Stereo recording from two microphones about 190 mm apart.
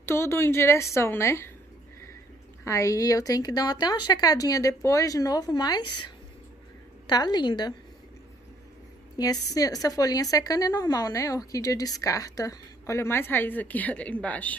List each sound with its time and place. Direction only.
0.0 s a woman's voice: 15° left (ahead or behind)
2.6 s a woman's voice: 15° left (ahead or behind)
7.1 s a woman's voice: 20° left (ahead or behind)
9.2 s a woman's voice: 20° left (ahead or behind)